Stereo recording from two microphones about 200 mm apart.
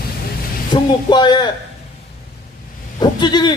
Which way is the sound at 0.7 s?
20° left (ahead or behind).